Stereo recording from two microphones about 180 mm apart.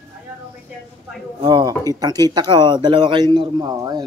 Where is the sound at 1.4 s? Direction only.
20° right (ahead or behind).